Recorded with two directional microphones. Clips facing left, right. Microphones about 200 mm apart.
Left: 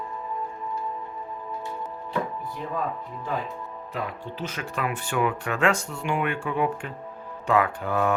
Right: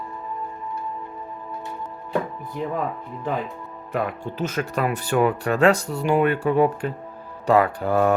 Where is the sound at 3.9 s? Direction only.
50° right (ahead or behind).